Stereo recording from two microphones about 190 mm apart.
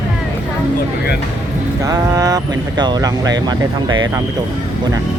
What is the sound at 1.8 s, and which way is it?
Speech, 20° right (ahead or behind).